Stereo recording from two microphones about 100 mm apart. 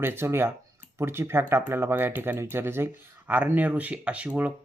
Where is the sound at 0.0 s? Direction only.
25° right (ahead or behind).